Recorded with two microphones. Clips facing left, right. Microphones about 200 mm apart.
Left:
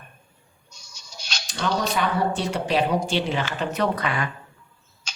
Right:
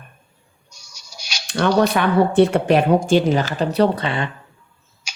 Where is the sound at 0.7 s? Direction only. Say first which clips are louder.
Right 1 dB; 10° right (ahead or behind).